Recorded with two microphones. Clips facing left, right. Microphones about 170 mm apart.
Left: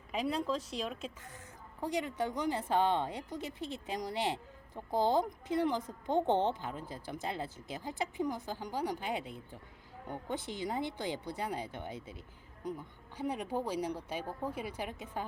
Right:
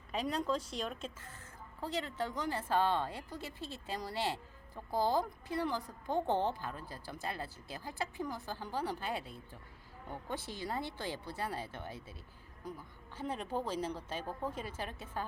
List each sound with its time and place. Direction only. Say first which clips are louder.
0.1 s a woman's voice: left 1 dB; 10° left (ahead or behind)
1.8 s a woman's voice: left 3 dB; 15° left (ahead or behind)